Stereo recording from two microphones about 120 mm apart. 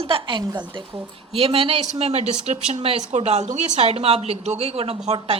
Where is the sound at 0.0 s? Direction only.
45° right (ahead or behind).